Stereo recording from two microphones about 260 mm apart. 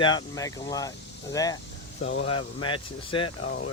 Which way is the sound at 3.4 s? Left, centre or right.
Left.